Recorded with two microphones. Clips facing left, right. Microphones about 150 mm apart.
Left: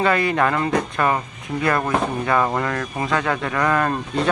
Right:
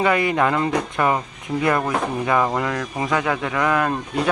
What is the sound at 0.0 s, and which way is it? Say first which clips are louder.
A man's voice: even; 15° right (ahead or behind).